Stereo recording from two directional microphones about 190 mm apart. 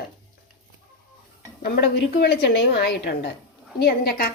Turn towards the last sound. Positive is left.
turn(degrees=55)  # may be behind; listen again after turning